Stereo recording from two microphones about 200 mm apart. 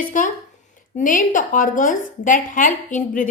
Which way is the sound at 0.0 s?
40° left (ahead or behind).